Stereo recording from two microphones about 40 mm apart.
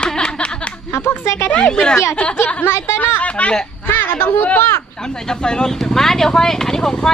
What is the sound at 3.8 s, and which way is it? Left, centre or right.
Speech, left.